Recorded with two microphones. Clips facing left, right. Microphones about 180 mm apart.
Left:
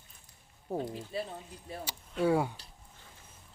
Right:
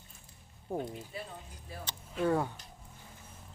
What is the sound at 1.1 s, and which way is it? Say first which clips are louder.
Speech: left 10 dB; 30° left (ahead or behind).